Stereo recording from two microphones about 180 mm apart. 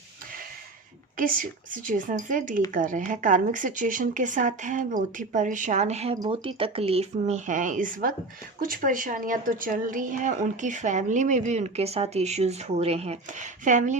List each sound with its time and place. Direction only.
1.7 s a woman's voice: 50° right (ahead or behind)